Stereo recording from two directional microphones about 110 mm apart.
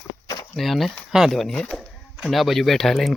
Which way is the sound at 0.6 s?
Centre (ahead or behind).